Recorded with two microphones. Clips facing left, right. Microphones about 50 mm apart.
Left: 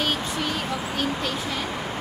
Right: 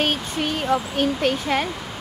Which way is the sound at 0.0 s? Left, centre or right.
Right.